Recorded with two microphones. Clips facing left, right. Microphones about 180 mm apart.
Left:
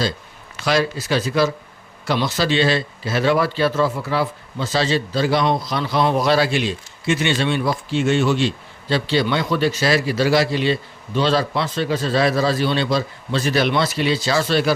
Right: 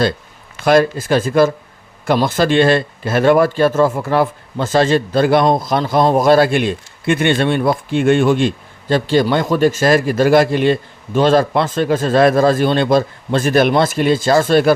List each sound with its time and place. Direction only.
0.6 s a man's voice: 50° right (ahead or behind)